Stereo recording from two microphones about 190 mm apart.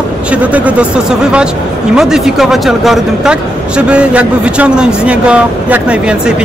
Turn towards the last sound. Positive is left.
turn(degrees=-5)  # may be behind; listen again after turning